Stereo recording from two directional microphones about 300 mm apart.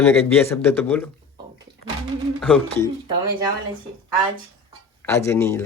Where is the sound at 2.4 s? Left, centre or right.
Centre.